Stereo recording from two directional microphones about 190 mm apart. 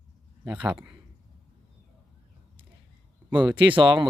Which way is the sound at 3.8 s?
25° right (ahead or behind).